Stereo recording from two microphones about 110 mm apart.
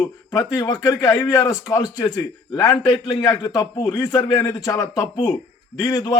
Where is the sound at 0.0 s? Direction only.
30° left (ahead or behind).